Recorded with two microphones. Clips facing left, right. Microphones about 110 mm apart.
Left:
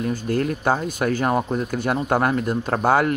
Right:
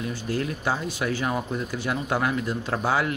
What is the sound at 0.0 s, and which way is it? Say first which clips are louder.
Speech: left 6 dB; 45° left (ahead or behind).